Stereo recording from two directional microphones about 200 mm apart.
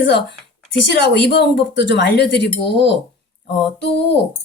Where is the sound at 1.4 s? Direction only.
60° left (ahead or behind).